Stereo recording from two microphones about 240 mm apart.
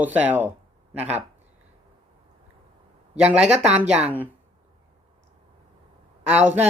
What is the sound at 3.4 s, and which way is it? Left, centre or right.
Speech, right.